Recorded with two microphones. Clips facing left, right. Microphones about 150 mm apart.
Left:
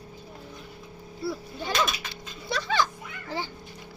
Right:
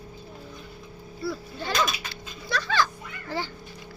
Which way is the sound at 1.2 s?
25° left (ahead or behind).